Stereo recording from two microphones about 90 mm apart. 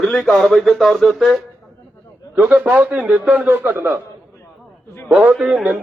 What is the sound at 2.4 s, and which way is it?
A man's voice, 15° right (ahead or behind).